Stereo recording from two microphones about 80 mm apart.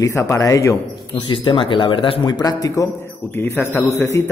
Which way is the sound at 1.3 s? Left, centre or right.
Left.